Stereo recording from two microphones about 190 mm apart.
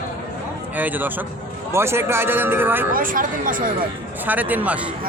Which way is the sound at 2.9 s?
45° right (ahead or behind).